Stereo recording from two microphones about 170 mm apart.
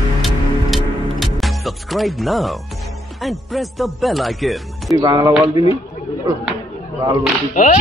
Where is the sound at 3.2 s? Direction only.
Centre (ahead or behind).